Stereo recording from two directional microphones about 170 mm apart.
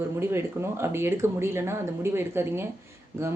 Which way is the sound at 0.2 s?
15° right (ahead or behind).